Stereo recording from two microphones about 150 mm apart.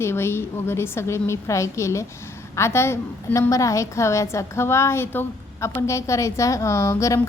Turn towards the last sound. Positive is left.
turn(degrees=20)  # may be behind; listen again after turning